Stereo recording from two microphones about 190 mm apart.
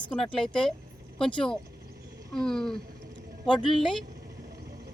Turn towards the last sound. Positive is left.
turn(degrees=0)  # may be behind; listen again after turning